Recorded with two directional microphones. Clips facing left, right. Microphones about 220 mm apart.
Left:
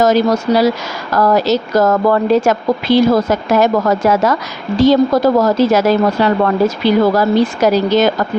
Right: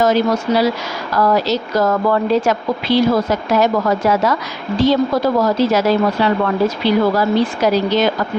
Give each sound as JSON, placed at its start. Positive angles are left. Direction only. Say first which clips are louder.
{"t": 0.0, "sound": "a woman's voice", "louder": "left 3 dB", "side_deg": 40}